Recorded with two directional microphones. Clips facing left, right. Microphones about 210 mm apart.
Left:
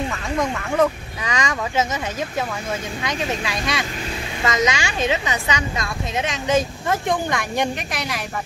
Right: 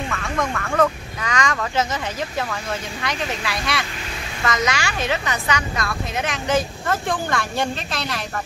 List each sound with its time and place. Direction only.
0.1 s a woman's voice: 20° left (ahead or behind)